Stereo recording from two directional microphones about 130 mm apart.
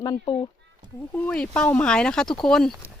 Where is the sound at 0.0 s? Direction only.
30° left (ahead or behind).